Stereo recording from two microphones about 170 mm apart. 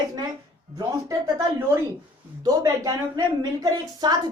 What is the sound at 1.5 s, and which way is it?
A woman's voice, 20° right (ahead or behind).